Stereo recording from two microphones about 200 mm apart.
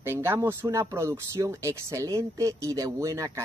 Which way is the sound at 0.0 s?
10° right (ahead or behind).